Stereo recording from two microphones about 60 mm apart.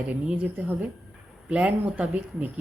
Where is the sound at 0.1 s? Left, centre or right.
Right.